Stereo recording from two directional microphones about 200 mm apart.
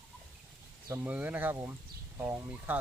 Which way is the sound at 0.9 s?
10° right (ahead or behind).